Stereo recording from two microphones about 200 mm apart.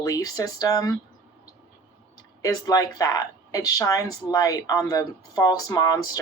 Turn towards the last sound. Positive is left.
turn(degrees=15)  # may be behind; listen again after turning